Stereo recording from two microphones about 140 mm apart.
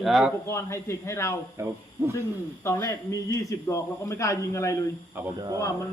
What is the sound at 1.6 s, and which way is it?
Speech, 20° right (ahead or behind).